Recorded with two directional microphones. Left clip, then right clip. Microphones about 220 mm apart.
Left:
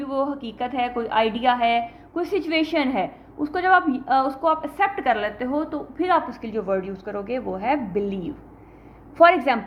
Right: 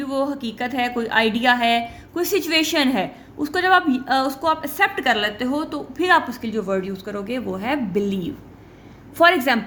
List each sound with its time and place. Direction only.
0.0 s a woman's voice: 45° right (ahead or behind)